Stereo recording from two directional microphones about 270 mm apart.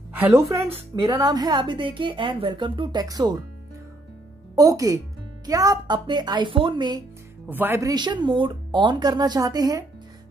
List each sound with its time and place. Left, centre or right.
0.1 s speech: centre
4.6 s speech: centre